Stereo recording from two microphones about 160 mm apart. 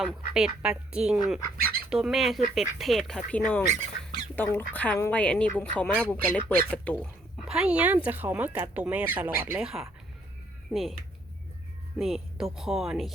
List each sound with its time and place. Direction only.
0.0 s speech: 5° right (ahead or behind)
1.5 s speech: 70° right (ahead or behind)
1.9 s speech: 5° right (ahead or behind)
3.7 s speech: 50° right (ahead or behind)
4.4 s speech: 10° left (ahead or behind)
7.4 s speech: 5° right (ahead or behind)
11.9 s speech: centre (ahead or behind)